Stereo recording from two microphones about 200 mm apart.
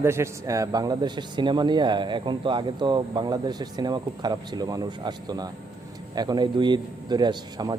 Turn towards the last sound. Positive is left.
turn(degrees=-20)  # may be behind; listen again after turning